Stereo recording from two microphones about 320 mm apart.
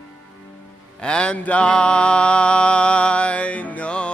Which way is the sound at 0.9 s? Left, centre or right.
Centre.